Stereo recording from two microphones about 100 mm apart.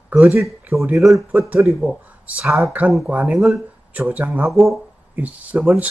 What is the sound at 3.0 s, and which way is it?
Speech, 15° right (ahead or behind).